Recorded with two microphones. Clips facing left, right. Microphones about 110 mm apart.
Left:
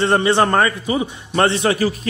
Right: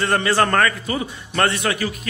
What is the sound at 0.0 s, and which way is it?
A man's voice, 25° left (ahead or behind).